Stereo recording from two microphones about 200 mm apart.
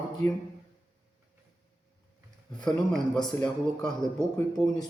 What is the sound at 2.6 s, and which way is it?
Speech, 5° left (ahead or behind).